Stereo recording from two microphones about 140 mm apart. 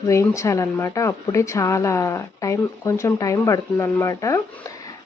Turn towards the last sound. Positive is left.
turn(degrees=20)  # may be behind; listen again after turning